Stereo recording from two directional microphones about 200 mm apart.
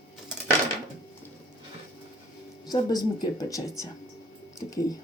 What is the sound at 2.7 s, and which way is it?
Speech, 20° left (ahead or behind).